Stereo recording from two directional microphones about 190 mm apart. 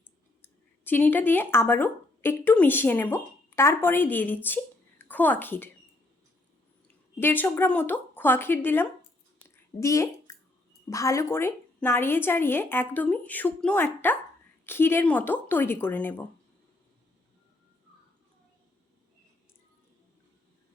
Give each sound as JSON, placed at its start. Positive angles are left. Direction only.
{"t": 0.4, "sound": "speech", "side_deg": 10}
{"t": 6.8, "sound": "a woman's voice", "side_deg": 10}